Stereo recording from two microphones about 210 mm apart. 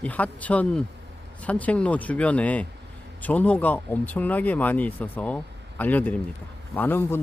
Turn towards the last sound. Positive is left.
turn(degrees=10)  # may be behind; listen again after turning